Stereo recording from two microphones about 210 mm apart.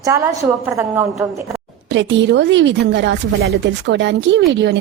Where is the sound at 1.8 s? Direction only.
60° right (ahead or behind).